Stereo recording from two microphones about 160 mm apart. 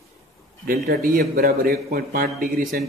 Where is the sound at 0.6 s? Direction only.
70° right (ahead or behind).